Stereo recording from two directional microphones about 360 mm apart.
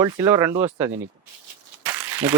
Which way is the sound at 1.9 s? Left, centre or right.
Centre.